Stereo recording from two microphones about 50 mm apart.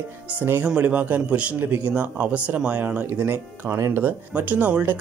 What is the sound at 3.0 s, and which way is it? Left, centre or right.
Speech, right.